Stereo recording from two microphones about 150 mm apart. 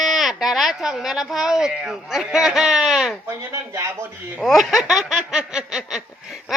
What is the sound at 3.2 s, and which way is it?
Speech, 20° right (ahead or behind).